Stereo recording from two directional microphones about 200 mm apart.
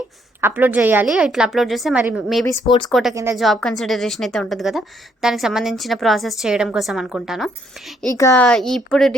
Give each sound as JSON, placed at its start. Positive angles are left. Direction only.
{"t": 0.4, "sound": "a woman's voice", "side_deg": -10}
{"t": 2.6, "sound": "speech", "side_deg": 25}
{"t": 2.9, "sound": "a woman's voice", "side_deg": 0}
{"t": 8.1, "sound": "a woman's voice", "side_deg": 15}